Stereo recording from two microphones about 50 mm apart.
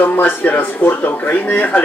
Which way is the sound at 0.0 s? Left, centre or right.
Left.